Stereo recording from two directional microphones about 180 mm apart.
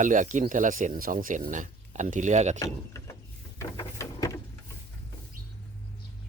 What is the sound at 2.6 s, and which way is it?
Speech, 15° left (ahead or behind).